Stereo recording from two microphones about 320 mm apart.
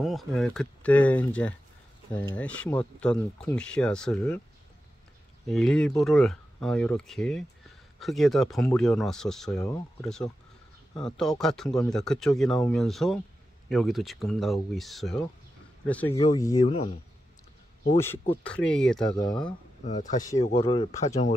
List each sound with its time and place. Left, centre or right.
0.0 s speech: centre
5.5 s speech: centre
16.2 s speech: centre
17.9 s speech: centre
19.8 s speech: left